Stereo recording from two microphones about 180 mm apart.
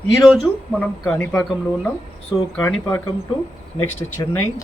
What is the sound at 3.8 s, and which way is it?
Speech, 20° left (ahead or behind).